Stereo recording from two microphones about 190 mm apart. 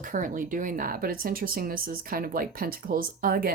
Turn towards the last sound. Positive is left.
turn(degrees=-50)  # may be behind; listen again after turning